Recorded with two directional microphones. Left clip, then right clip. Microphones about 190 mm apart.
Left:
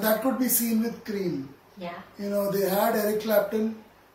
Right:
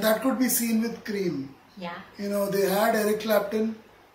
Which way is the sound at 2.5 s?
Centre (ahead or behind).